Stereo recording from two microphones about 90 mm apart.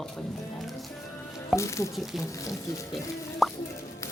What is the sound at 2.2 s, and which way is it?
Speech, 35° left (ahead or behind).